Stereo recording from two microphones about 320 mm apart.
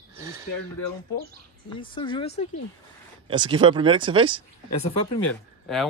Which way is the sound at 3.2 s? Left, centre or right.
Centre.